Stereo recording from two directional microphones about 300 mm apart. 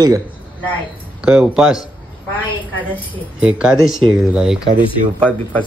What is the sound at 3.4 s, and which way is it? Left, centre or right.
A man's voice, centre.